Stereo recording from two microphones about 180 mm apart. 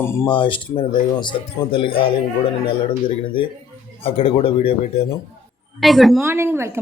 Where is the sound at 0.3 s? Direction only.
30° left (ahead or behind).